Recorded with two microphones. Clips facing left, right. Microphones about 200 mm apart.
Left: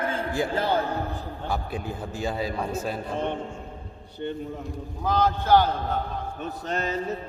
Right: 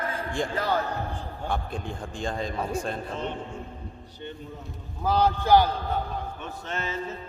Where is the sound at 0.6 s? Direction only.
30° left (ahead or behind).